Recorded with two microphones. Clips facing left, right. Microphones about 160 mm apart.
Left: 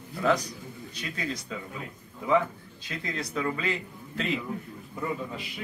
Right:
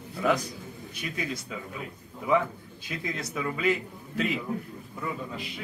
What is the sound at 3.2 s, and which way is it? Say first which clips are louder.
Speech: left 4 dB; 5° right (ahead or behind).